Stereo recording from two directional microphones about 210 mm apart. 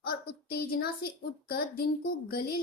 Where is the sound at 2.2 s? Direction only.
45° left (ahead or behind).